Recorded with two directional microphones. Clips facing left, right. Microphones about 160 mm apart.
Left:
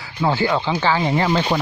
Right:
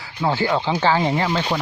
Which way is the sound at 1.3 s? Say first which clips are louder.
Left 3 dB; 5° left (ahead or behind).